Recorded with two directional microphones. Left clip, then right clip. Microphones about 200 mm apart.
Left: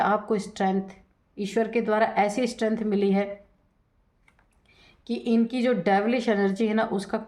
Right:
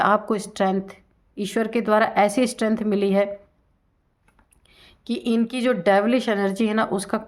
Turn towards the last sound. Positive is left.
turn(degrees=-40)  # may be behind; listen again after turning